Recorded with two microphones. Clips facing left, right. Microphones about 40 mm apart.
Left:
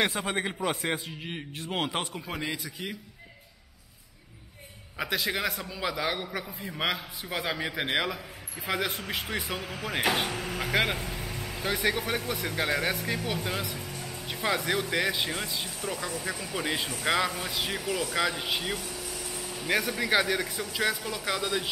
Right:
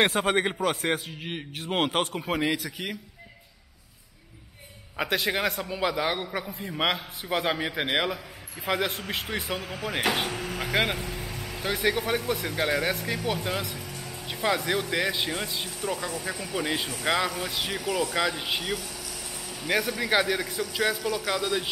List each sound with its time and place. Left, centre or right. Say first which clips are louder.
0.2 s a man's voice: right 7 dB; right
0.6 s a man's voice: right 3 dB; right
1.2 s a man's voice: right 2 dB; centre
2.1 s a man's voice: right 7 dB; right
5.3 s a man's voice: right 3 dB; centre